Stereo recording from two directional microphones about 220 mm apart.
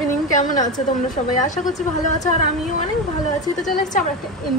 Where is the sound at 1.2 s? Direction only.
25° left (ahead or behind).